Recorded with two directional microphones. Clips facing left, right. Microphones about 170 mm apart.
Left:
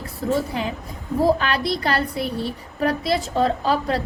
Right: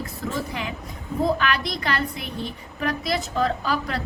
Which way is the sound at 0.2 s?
35° left (ahead or behind).